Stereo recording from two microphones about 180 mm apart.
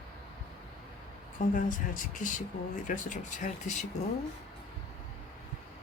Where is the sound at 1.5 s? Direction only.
45° left (ahead or behind).